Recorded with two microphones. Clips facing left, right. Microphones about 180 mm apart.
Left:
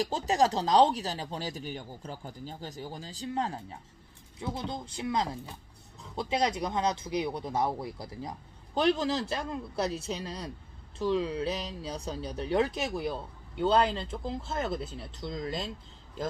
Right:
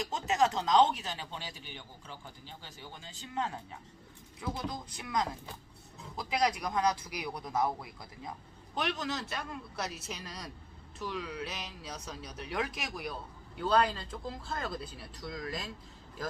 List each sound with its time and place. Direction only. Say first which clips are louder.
0.0 s speech: left 3 dB; 35° left (ahead or behind)